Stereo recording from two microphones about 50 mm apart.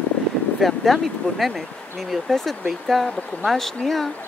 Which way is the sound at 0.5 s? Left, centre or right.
Centre.